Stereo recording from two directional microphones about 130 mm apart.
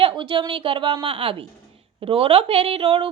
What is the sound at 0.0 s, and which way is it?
A woman's voice, 40° right (ahead or behind).